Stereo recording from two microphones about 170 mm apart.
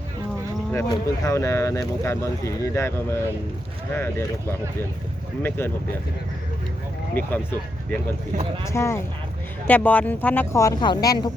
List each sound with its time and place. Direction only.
0.7 s speech: 15° left (ahead or behind)
5.4 s speech: 10° left (ahead or behind)
7.1 s speech: 10° left (ahead or behind)
8.6 s speech: 15° left (ahead or behind)